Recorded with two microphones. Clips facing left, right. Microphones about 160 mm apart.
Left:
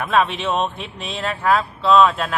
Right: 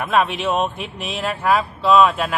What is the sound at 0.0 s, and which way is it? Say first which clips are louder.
Speech: even; 5° right (ahead or behind).